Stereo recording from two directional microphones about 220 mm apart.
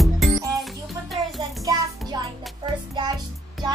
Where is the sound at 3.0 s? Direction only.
20° right (ahead or behind).